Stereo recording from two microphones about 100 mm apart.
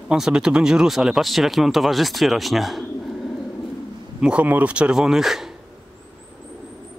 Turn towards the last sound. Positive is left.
turn(degrees=-5)  # may be behind; listen again after turning